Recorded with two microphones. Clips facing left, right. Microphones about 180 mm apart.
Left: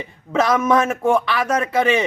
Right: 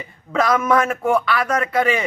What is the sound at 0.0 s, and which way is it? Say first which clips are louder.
A man's voice: left 1 dB; 25° left (ahead or behind).